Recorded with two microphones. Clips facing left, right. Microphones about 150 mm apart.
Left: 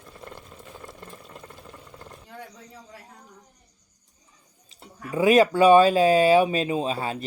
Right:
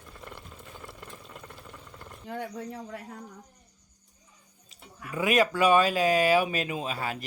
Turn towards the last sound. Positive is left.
turn(degrees=30)  # may be behind; listen again after turning